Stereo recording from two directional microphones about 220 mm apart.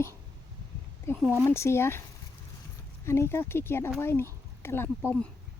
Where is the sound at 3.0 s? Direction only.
10° left (ahead or behind).